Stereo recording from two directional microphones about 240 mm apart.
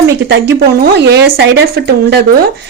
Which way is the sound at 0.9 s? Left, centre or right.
Right.